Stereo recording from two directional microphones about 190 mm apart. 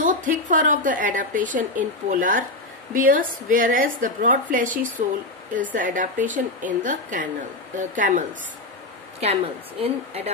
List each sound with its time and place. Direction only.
0.0 s a woman's voice: 45° right (ahead or behind)